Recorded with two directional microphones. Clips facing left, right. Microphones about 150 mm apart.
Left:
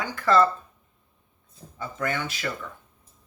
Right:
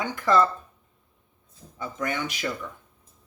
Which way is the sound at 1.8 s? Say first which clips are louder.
Even; 15° right (ahead or behind).